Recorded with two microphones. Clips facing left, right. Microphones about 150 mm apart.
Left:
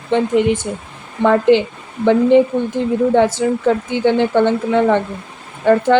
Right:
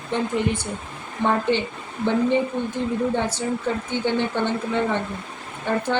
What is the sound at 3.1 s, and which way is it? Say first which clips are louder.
Speech: left 10 dB; 90° left.